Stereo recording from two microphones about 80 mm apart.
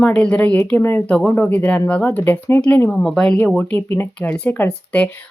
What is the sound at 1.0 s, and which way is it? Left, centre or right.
Speech, centre.